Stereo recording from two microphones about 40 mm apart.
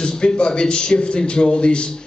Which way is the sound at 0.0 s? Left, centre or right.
Left.